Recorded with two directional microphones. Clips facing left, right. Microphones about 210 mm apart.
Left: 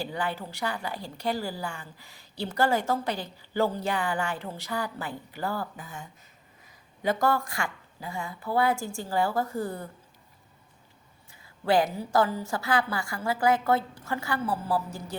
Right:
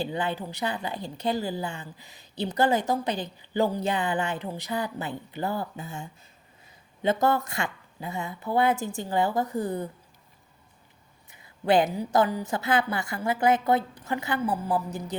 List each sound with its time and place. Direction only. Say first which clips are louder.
0.0 s a woman's voice: right 3 dB; 20° right (ahead or behind)
11.3 s a woman's voice: right 2 dB; 20° right (ahead or behind)